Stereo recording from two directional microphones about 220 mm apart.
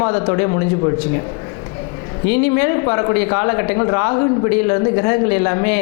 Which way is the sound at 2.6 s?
20° left (ahead or behind).